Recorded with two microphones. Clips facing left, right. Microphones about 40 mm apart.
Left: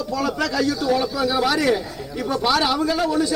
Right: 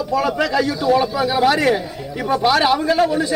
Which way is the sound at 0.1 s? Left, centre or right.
Right.